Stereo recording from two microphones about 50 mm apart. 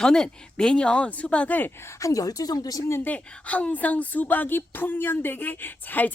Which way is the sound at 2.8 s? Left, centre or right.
Left.